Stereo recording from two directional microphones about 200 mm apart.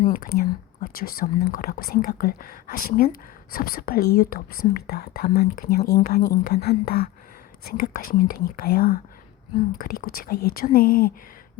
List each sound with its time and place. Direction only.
0.0 s speech: 45° left (ahead or behind)